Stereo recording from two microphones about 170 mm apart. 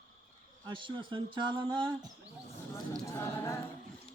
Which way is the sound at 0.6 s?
30° right (ahead or behind).